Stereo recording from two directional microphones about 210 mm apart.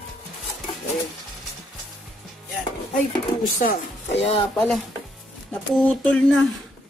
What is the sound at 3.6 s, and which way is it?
Speech, 45° left (ahead or behind).